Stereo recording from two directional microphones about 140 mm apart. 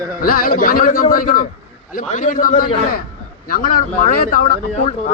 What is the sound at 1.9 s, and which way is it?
A man's voice, 70° left (ahead or behind).